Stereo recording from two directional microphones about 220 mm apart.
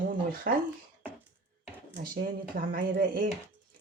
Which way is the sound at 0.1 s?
40° right (ahead or behind).